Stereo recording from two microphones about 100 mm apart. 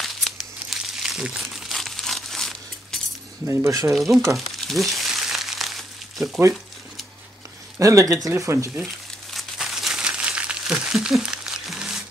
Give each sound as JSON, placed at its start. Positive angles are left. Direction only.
{"t": 0.0, "sound": "crumpling", "side_deg": 0}
{"t": 3.4, "sound": "speech", "side_deg": -30}
{"t": 3.9, "sound": "speech", "side_deg": 0}
{"t": 4.6, "sound": "crumpling", "side_deg": 0}
{"t": 7.8, "sound": "speech", "side_deg": -30}
{"t": 8.8, "sound": "crumpling", "side_deg": 0}